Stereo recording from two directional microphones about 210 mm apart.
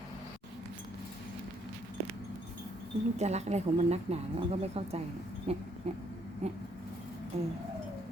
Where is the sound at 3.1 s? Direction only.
30° right (ahead or behind).